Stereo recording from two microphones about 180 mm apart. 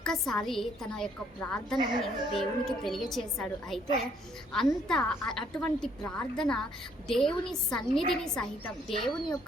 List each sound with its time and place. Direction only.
0.0 s a woman's voice: 5° left (ahead or behind)